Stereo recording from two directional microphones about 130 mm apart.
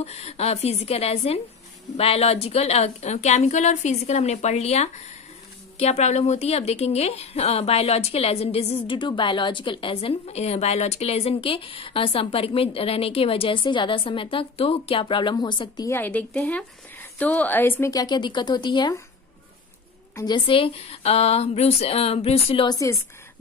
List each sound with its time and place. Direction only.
0.0 s a woman's voice: 55° left (ahead or behind); by 15.9 s 35° left (ahead or behind)
15.9 s a woman's voice: 10° left (ahead or behind); by 18.9 s 35° left (ahead or behind)
20.2 s speech: 40° left (ahead or behind)
22.7 s a woman's voice: 25° left (ahead or behind)